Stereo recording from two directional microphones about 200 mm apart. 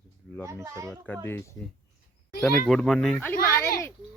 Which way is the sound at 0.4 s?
15° right (ahead or behind).